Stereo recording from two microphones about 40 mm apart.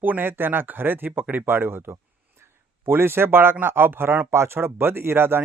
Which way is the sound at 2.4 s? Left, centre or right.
Right.